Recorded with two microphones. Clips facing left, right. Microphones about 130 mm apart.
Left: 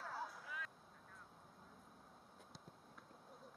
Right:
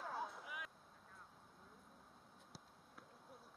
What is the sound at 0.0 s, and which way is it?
Vehicle, 15° right (ahead or behind).